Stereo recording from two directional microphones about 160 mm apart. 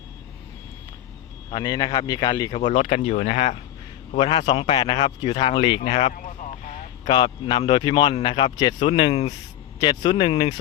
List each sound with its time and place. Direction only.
1.5 s a man's voice: 25° left (ahead or behind)
2.5 s speech: 45° left (ahead or behind)
6.1 s a sound: 50° left (ahead or behind)
7.1 s a man's voice: 30° left (ahead or behind)